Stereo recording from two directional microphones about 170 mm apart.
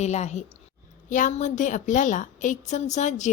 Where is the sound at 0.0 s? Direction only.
40° left (ahead or behind).